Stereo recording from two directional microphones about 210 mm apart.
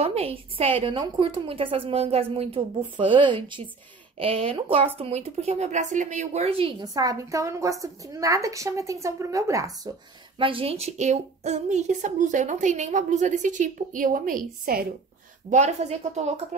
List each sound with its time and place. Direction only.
0.0 s a woman's voice: 30° right (ahead or behind)
15.5 s a woman's voice: 30° right (ahead or behind)